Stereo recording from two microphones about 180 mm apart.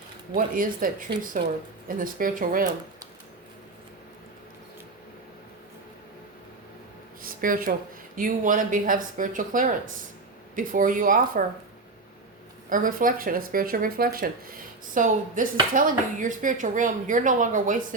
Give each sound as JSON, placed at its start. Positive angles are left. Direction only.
{"t": 0.3, "sound": "speech", "side_deg": -50}
{"t": 7.2, "sound": "a sound", "side_deg": -50}
{"t": 8.1, "sound": "speech", "side_deg": -45}
{"t": 12.7, "sound": "speech", "side_deg": -50}